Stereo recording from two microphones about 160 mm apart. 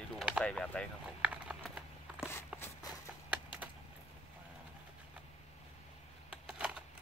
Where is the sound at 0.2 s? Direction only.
5° right (ahead or behind).